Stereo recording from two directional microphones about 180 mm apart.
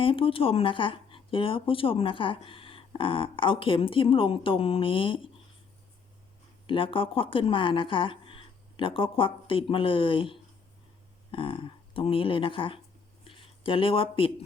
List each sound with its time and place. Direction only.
0.0 s speech: 30° left (ahead or behind)
6.7 s speech: 30° left (ahead or behind)